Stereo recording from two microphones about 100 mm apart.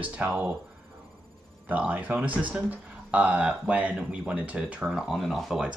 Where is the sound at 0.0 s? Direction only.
15° right (ahead or behind).